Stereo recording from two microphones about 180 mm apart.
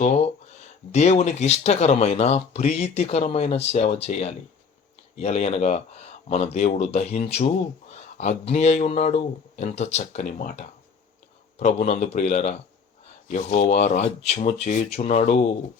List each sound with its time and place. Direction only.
0.9 s a man's voice: 40° left (ahead or behind)